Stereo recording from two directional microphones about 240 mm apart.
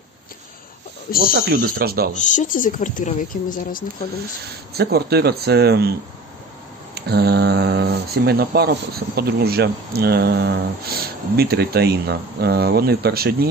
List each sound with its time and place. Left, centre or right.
1.3 s speech: right
2.1 s speech: left
4.7 s speech: right
7.0 s speech: right